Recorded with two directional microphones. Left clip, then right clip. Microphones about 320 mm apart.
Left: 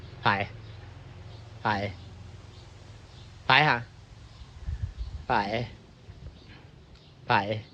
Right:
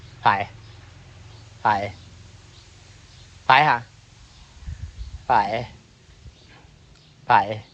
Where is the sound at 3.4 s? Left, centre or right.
Centre.